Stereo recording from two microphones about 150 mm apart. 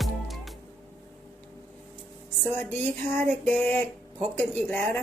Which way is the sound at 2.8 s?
10° left (ahead or behind).